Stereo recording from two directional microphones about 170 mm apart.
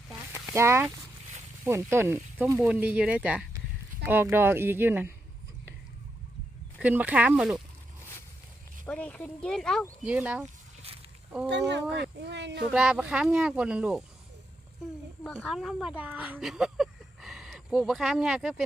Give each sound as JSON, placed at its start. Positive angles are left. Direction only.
{"t": 0.5, "sound": "speech", "side_deg": -15}
{"t": 6.7, "sound": "speech", "side_deg": -10}
{"t": 8.9, "sound": "speech", "side_deg": 5}
{"t": 11.4, "sound": "speech", "side_deg": -90}
{"t": 12.7, "sound": "speech", "side_deg": -5}
{"t": 15.2, "sound": "speech", "side_deg": 5}